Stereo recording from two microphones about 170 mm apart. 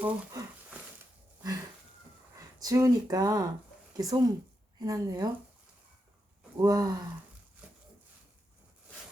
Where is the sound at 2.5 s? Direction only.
20° right (ahead or behind).